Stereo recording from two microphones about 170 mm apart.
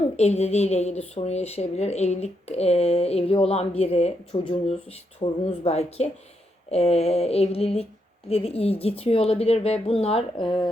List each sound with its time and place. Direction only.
0.2 s speech: 40° left (ahead or behind)